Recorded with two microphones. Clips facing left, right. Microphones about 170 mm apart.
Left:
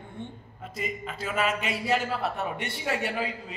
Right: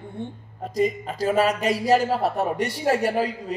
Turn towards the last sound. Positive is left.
turn(degrees=-40)  # may be behind; listen again after turning